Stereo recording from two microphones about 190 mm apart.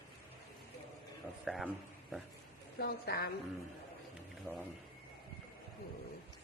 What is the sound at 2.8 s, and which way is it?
Speech, 55° left (ahead or behind).